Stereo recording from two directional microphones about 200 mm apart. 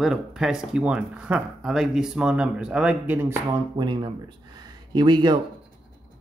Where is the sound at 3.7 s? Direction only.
20° right (ahead or behind).